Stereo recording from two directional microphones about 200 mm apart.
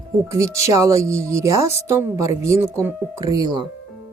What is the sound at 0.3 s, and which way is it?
Speech, 15° right (ahead or behind).